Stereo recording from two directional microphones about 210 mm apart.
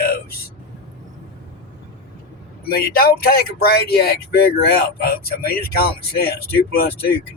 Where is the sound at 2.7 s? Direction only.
45° left (ahead or behind).